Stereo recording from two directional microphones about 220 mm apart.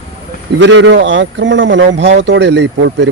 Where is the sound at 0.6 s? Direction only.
55° right (ahead or behind).